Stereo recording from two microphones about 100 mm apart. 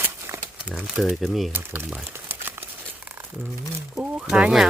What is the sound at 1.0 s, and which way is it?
Speech, centre (ahead or behind).